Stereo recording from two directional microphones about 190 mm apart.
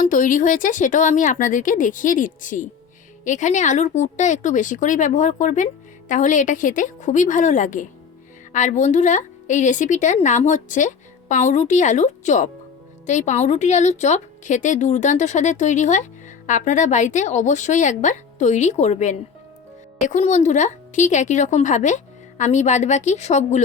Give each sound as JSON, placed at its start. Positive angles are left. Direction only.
{"t": 0.0, "sound": "a woman's voice", "side_deg": 45}